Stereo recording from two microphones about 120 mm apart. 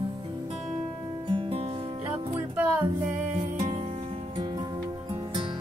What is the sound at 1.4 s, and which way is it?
Music, 55° right (ahead or behind).